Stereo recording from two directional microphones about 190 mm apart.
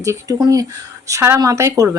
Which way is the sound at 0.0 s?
15° right (ahead or behind).